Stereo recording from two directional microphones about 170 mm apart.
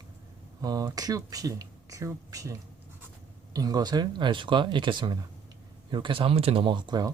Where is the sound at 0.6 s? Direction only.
20° right (ahead or behind).